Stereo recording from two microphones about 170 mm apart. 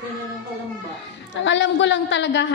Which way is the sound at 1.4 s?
90° left.